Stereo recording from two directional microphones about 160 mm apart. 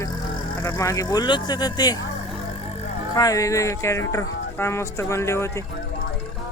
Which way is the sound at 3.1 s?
20° left (ahead or behind).